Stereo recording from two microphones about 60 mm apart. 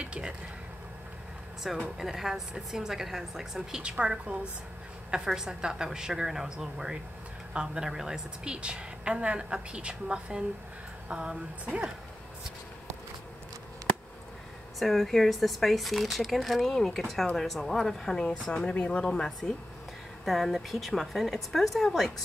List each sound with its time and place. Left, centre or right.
0.0 s a sound: centre
1.6 s a woman's voice: centre
4.0 s a woman's voice: centre
11.1 s a sound: centre
11.6 s speech: centre
14.8 s speech: centre